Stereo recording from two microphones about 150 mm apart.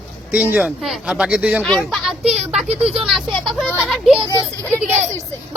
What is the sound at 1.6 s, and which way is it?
Speech, 5° left (ahead or behind).